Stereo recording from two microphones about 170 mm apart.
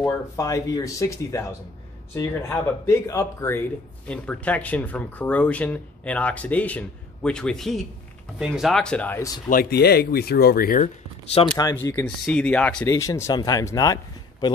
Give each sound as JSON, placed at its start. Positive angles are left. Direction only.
{"t": 0.0, "sound": "speech", "side_deg": 20}
{"t": 9.5, "sound": "speech", "side_deg": 65}
{"t": 11.6, "sound": "speech", "side_deg": 20}